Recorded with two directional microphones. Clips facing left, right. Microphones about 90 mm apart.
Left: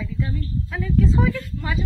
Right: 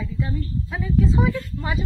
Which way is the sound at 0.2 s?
20° right (ahead or behind).